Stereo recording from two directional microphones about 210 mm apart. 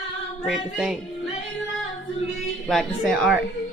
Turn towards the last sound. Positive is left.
turn(degrees=0)  # may be behind; listen again after turning